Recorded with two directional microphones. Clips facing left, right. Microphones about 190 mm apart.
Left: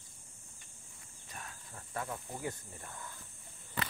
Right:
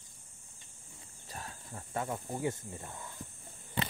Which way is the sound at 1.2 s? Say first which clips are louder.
Right 4 dB; 35° right (ahead or behind).